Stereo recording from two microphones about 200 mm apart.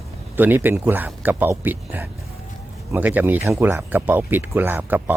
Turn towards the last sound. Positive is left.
turn(degrees=-10)  # may be behind; listen again after turning